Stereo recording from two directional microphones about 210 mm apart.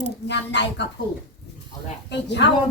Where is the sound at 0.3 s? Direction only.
55° left (ahead or behind).